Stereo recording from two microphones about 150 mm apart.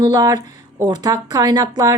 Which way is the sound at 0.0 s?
25° right (ahead or behind).